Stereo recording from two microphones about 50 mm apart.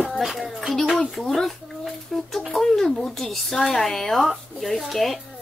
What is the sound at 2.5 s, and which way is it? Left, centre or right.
Speech, centre.